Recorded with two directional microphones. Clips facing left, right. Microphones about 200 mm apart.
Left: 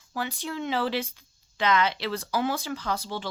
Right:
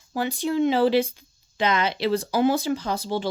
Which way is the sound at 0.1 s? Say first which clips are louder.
Right 8 dB; 20° right (ahead or behind).